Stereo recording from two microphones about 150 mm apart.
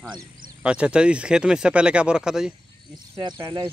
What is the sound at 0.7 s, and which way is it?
Speech, 5° right (ahead or behind).